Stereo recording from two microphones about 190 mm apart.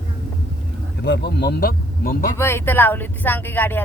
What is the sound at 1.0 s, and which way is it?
Speech, 60° left (ahead or behind).